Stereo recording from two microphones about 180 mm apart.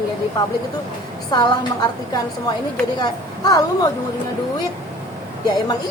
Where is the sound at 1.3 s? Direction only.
25° left (ahead or behind).